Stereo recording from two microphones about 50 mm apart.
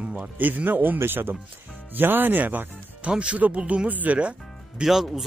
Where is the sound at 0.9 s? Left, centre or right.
Right.